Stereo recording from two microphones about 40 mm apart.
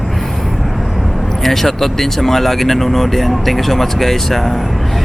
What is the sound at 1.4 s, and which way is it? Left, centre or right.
Speech, centre.